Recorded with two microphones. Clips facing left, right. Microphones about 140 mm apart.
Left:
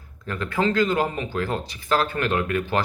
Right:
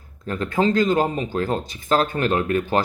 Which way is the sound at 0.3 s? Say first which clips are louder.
Right 3 dB; 30° right (ahead or behind).